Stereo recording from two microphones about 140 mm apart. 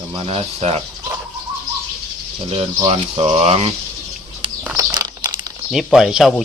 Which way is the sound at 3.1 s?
45° right (ahead or behind).